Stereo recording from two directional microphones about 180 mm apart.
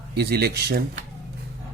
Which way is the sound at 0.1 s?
65° right (ahead or behind).